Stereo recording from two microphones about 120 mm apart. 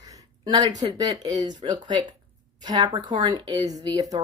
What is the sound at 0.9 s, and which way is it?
Speech, 35° right (ahead or behind).